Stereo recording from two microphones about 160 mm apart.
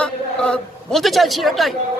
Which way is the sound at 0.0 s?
5° left (ahead or behind).